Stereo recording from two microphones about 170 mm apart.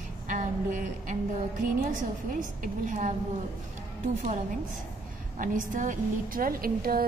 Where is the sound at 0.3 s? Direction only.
50° right (ahead or behind).